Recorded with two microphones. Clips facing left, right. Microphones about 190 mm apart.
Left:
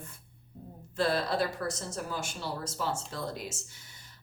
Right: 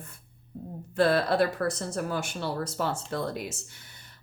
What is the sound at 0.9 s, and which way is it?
A woman's voice, 60° right (ahead or behind).